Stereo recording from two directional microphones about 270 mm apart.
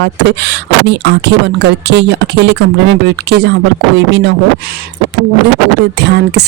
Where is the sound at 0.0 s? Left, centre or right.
Right.